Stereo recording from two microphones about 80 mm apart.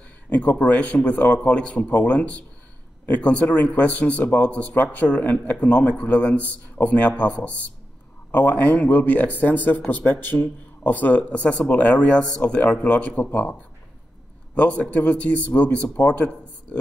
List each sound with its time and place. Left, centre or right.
0.3 s a man's voice: left